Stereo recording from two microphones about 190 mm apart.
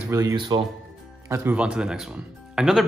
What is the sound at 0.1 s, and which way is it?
Speech, 15° right (ahead or behind).